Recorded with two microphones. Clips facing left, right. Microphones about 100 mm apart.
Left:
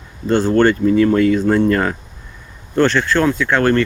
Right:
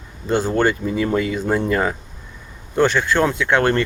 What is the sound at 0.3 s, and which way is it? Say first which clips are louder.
Speech: left 5 dB; 10° right (ahead or behind).